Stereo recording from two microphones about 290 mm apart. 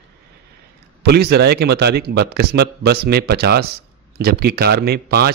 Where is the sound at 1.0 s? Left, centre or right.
Right.